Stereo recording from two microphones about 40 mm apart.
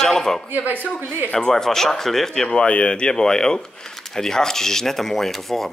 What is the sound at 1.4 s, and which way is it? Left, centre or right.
Speech, centre.